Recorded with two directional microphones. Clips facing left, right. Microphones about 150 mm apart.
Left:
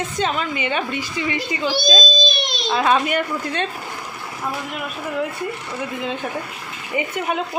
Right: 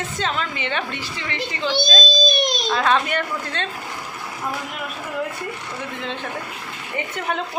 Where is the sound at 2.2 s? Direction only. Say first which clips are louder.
Right 3 dB; 45° right (ahead or behind).